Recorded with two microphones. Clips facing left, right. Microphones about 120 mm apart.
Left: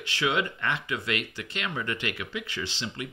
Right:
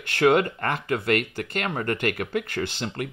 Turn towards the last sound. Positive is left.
turn(degrees=-50)  # may be behind; listen again after turning